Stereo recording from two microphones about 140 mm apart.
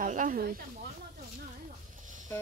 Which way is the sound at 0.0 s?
65° right (ahead or behind).